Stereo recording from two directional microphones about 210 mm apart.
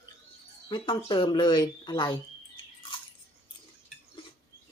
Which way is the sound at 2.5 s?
25° left (ahead or behind).